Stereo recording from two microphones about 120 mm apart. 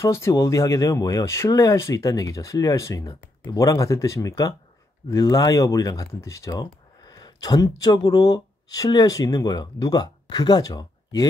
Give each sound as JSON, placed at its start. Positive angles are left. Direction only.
{"t": 0.0, "sound": "speech", "side_deg": 25}